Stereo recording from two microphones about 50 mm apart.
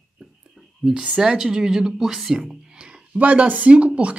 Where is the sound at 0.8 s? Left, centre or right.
Centre.